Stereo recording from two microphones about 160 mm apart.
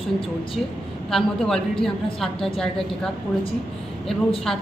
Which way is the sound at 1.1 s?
Centre (ahead or behind).